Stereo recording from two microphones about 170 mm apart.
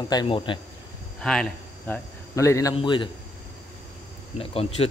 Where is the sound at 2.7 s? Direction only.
30° left (ahead or behind).